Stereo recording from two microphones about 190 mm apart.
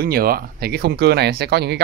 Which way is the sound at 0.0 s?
55° right (ahead or behind).